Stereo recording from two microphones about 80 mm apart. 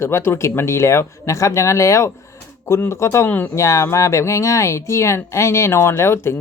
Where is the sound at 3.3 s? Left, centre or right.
Left.